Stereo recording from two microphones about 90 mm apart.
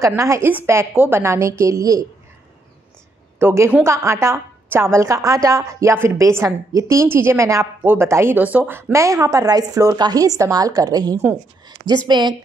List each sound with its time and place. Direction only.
0.0 s a woman's voice: 35° right (ahead or behind)
3.3 s a woman's voice: 30° right (ahead or behind)
8.9 s a woman's voice: 35° right (ahead or behind); by 12.4 s 55° right (ahead or behind)